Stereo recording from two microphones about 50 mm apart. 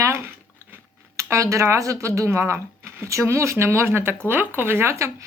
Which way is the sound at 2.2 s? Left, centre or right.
Right.